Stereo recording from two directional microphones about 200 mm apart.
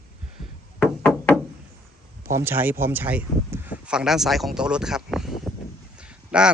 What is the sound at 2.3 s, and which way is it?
A man's voice, 10° right (ahead or behind).